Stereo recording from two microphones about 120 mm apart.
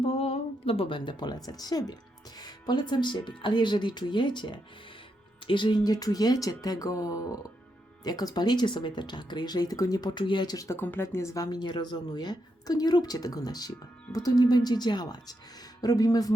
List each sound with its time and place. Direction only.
0.0 s a sound: 55° left (ahead or behind); by 1.4 s 40° left (ahead or behind)
1.5 s speech: 30° left (ahead or behind)
10.8 s speech: 20° left (ahead or behind)